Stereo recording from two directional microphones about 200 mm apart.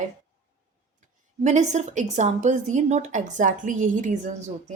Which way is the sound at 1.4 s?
35° right (ahead or behind).